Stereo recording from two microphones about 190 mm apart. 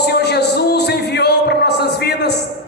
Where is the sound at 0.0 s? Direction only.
60° left (ahead or behind).